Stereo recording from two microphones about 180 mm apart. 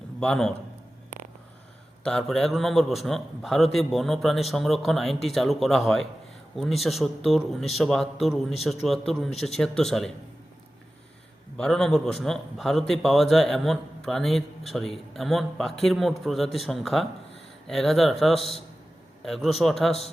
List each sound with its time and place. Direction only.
0.2 s a man's voice: 5° left (ahead or behind)
2.0 s a man's voice: 5° left (ahead or behind)
11.5 s a man's voice: 5° left (ahead or behind)
18.3 s a man's voice: 35° left (ahead or behind)
19.2 s a man's voice: centre (ahead or behind)